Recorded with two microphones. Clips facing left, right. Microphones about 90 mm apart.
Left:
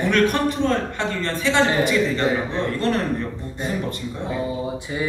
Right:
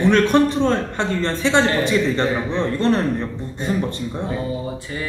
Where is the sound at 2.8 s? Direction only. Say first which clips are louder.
Right 4 dB; 30° right (ahead or behind).